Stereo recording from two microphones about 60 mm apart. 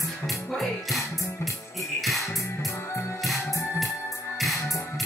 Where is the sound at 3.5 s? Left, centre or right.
Left.